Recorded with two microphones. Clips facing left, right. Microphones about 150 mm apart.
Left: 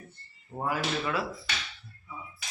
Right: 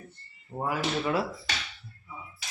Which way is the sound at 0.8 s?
25° right (ahead or behind).